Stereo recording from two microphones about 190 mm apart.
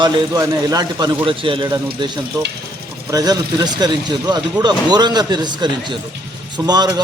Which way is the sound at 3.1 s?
20° right (ahead or behind).